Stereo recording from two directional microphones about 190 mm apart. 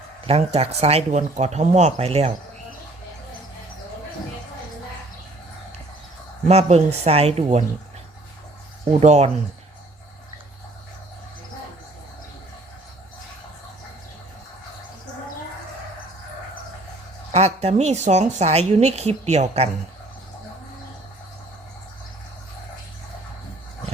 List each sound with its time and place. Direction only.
0.3 s a woman's voice: 35° right (ahead or behind)
6.5 s a woman's voice: 35° right (ahead or behind)
8.9 s a woman's voice: 35° right (ahead or behind)
17.3 s a woman's voice: 35° right (ahead or behind)